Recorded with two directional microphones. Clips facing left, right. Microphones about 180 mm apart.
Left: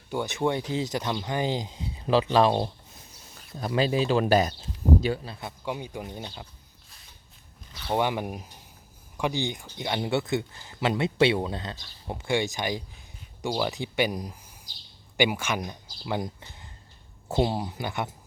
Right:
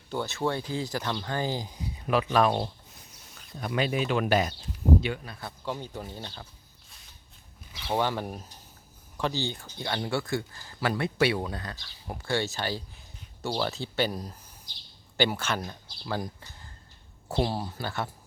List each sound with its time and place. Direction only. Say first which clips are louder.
0.1 s speech: left 3 dB; 15° left (ahead or behind)
7.9 s speech: left 2 dB; 15° left (ahead or behind)